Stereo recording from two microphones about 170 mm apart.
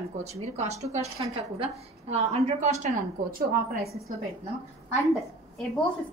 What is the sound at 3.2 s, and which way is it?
Speech, 60° right (ahead or behind).